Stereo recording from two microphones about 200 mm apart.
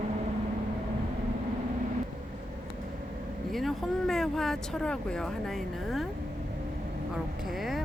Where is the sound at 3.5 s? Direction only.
Centre (ahead or behind).